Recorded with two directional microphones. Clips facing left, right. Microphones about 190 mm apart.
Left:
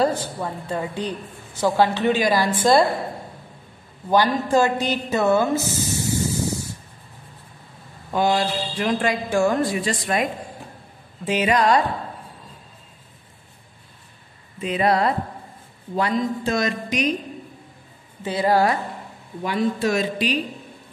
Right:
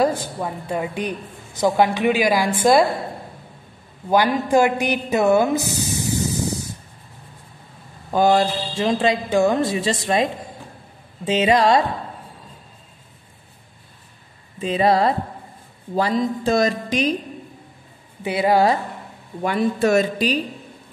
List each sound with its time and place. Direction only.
0.0 s a woman's voice: 10° right (ahead or behind)
4.1 s a woman's voice: 10° right (ahead or behind)
8.1 s a woman's voice: 40° right (ahead or behind)
8.7 s speech: 25° right (ahead or behind)
14.6 s a woman's voice: 30° right (ahead or behind)
18.2 s a woman's voice: 15° right (ahead or behind)
19.4 s speech: 50° right (ahead or behind)